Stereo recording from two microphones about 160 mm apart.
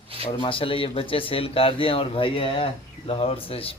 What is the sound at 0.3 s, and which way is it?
Speech, 35° left (ahead or behind).